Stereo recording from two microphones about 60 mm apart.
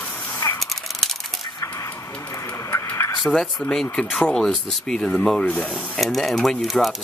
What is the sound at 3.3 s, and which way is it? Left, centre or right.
Speech, centre.